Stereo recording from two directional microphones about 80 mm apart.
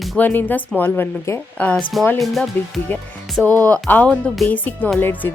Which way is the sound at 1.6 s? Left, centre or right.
Left.